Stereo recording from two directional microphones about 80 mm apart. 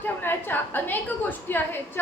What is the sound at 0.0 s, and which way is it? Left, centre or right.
A woman's voice, left.